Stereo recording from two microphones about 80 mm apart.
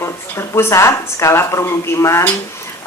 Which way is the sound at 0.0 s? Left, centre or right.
Left.